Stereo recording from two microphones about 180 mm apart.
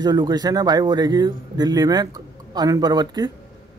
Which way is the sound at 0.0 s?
25° right (ahead or behind).